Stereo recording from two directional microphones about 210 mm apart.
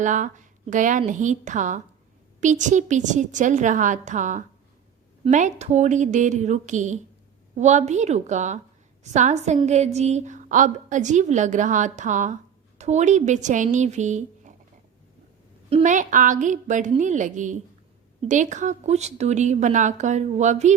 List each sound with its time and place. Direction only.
0.0 s a woman's voice: 35° right (ahead or behind)
15.7 s a woman's voice: 35° right (ahead or behind)